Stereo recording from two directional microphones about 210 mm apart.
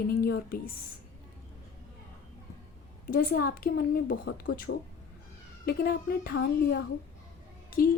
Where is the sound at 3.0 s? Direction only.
45° left (ahead or behind).